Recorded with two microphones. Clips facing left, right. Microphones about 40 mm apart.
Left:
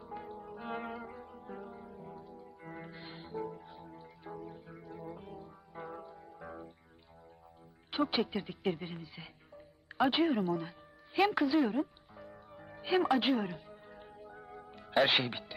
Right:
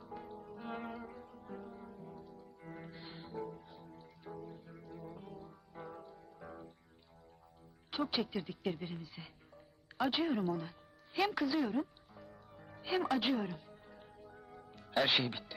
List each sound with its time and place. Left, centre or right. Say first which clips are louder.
0.0 s music: left 4 dB; centre
7.9 s speech: left 4 dB; centre
10.2 s speech: left 4 dB; centre
10.6 s music: left 3 dB; centre
13.7 s music: left 4 dB; centre
15.0 s speech: left 2 dB; centre